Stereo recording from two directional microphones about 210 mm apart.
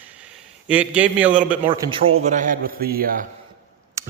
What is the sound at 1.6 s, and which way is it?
A man's voice, 25° right (ahead or behind).